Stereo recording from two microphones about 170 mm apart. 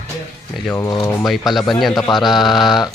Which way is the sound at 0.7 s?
20° left (ahead or behind).